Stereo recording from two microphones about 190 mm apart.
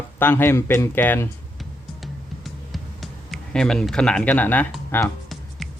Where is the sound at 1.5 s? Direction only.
Centre (ahead or behind).